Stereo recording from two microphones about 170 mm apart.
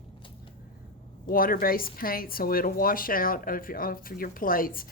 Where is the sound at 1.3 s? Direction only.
55° left (ahead or behind).